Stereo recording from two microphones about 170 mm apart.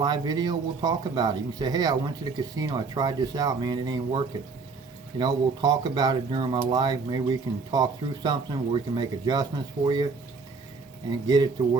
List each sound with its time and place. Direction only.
0.0 s speech: 25° right (ahead or behind)
5.2 s speech: 25° right (ahead or behind)
11.1 s speech: 25° right (ahead or behind)